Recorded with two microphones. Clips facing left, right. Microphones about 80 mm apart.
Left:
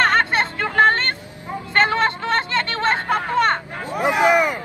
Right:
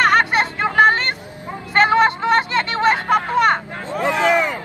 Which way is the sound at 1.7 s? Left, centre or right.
Centre.